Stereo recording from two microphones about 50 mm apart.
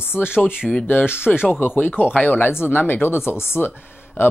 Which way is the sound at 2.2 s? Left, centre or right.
Left.